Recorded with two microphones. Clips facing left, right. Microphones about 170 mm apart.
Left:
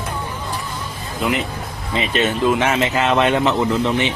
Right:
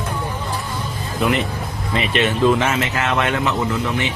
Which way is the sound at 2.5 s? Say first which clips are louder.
Left 1 dB; 20° left (ahead or behind).